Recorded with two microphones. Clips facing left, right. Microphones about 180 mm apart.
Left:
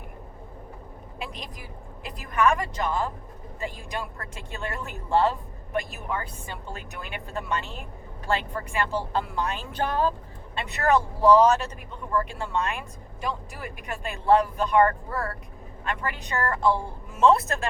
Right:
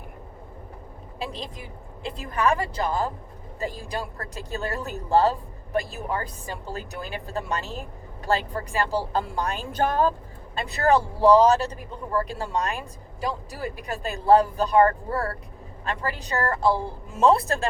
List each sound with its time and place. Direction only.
1.2 s speech: 30° right (ahead or behind)